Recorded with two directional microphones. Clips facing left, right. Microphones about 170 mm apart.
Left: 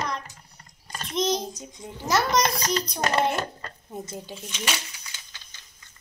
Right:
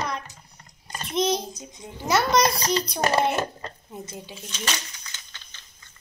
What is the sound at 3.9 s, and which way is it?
Speech, 45° left (ahead or behind).